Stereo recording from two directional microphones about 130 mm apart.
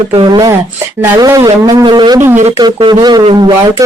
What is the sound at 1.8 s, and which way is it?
Speech, 35° right (ahead or behind).